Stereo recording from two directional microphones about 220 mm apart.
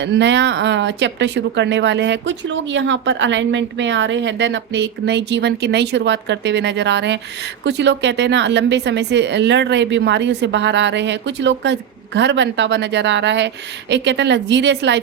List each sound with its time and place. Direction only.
0.0 s speech: 55° right (ahead or behind)